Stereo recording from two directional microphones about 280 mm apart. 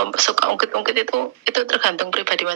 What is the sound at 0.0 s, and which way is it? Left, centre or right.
Speech, right.